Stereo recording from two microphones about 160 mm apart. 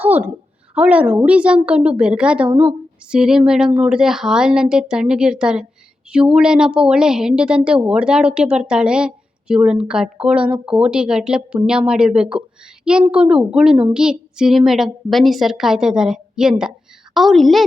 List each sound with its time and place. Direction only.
0.0 s a sound: 10° right (ahead or behind)
0.7 s a woman's voice: 10° right (ahead or behind)
2.5 s a woman's voice: 35° right (ahead or behind)
3.1 s speech: 5° right (ahead or behind)